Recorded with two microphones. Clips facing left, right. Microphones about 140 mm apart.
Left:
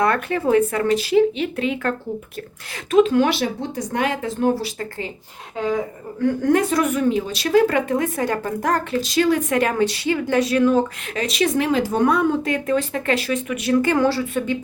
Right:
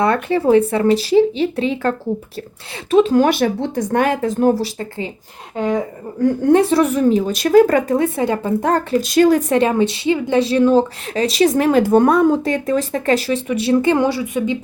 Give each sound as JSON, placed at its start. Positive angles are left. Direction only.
{"t": 0.0, "sound": "speech", "side_deg": -30}
{"t": 4.8, "sound": "a woman's voice", "side_deg": -25}
{"t": 6.2, "sound": "speech", "side_deg": -30}
{"t": 7.9, "sound": "a woman's voice", "side_deg": -30}
{"t": 9.0, "sound": "speech", "side_deg": -50}
{"t": 9.6, "sound": "speech", "side_deg": -25}